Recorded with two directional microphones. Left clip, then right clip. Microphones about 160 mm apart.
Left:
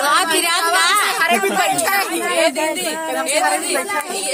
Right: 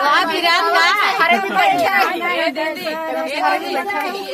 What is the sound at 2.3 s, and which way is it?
Speech, 90° left.